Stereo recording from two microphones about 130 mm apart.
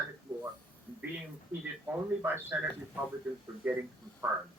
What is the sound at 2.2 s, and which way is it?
A man's voice, 15° right (ahead or behind).